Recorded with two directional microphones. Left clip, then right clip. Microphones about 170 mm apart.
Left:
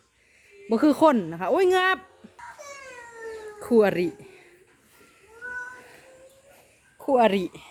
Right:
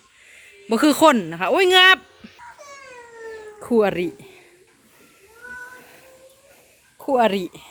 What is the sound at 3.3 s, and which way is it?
Cat, 5° left (ahead or behind).